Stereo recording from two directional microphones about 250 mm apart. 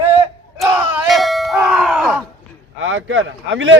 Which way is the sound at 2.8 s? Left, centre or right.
Right.